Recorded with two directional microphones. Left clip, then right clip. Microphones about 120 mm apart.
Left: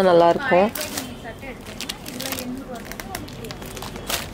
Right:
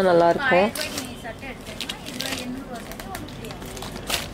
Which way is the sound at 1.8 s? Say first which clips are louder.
Right 1 dB; 25° left (ahead or behind).